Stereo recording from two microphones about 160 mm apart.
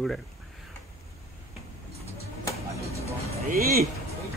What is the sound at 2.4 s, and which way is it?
Music, 20° left (ahead or behind).